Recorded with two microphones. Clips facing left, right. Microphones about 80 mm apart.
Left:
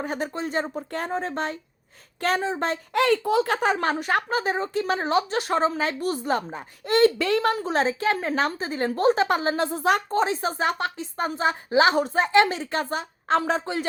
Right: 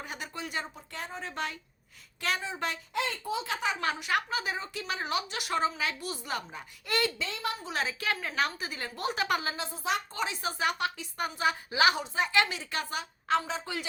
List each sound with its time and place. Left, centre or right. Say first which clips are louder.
0.0 s a woman's voice: left 11 dB; left
0.8 s a woman's voice: left 12 dB; left
1.3 s a woman's voice: left 7 dB; left
2.9 s speech: left 15 dB; left
3.4 s a woman's voice: left 8 dB; left
7.2 s a woman's voice: left 12 dB; left
7.6 s a woman's voice: left 10 dB; left
9.6 s a woman's voice: left 10 dB; left
10.2 s a woman's voice: left 9 dB; left